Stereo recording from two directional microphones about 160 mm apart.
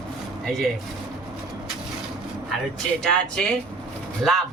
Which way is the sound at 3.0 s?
5° left (ahead or behind).